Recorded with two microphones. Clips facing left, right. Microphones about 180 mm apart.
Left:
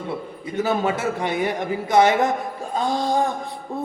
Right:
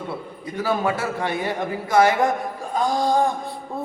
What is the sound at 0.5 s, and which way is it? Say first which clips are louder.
A man's voice: left 1 dB; 20° left (ahead or behind).